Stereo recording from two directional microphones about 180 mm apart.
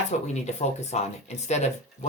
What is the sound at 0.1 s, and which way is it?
Speech, 40° left (ahead or behind).